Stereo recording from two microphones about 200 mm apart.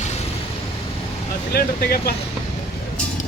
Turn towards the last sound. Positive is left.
turn(degrees=50)  # may be behind; listen again after turning